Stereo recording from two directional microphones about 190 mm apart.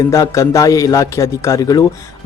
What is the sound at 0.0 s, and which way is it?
Speech, 15° left (ahead or behind).